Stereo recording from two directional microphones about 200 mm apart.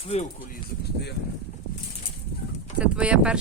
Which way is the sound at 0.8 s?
55° left (ahead or behind).